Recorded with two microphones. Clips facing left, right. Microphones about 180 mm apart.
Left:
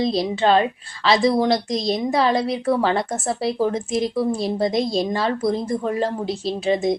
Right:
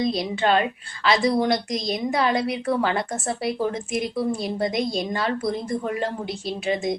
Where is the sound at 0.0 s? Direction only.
30° left (ahead or behind).